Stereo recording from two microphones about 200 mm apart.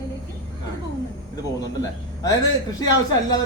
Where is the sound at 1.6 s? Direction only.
20° left (ahead or behind).